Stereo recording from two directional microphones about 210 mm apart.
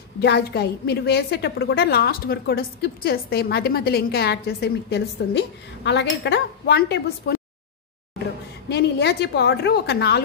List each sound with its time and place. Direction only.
0.2 s a woman's voice: 50° left (ahead or behind)
8.6 s a woman's voice: 50° left (ahead or behind)